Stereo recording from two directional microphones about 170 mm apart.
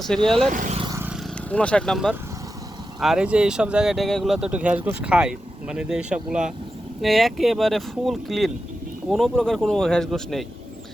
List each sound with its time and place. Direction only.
0.3 s speech: centre (ahead or behind)
0.5 s speech: 50° right (ahead or behind)
0.9 s vehicle: 10° right (ahead or behind)
1.5 s speech: 5° left (ahead or behind)